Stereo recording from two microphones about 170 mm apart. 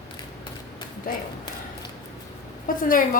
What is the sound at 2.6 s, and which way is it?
Speech, 55° left (ahead or behind).